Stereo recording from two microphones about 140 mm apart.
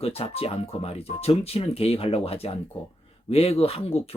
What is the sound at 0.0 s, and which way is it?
Speech, 45° left (ahead or behind).